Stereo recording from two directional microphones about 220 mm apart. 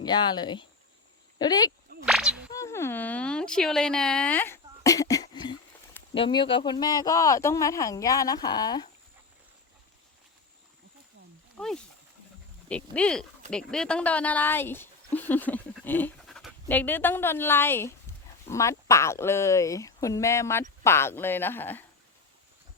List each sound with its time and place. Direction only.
0.0 s speech: 20° left (ahead or behind)
2.0 s a sound: centre (ahead or behind)
2.5 s speech: 15° left (ahead or behind)
11.5 s speech: centre (ahead or behind)